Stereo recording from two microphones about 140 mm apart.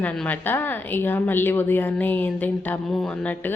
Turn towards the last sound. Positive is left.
turn(degrees=10)  # may be behind; listen again after turning